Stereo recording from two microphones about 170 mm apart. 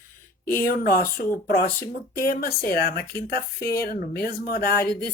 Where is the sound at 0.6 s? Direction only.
60° left (ahead or behind).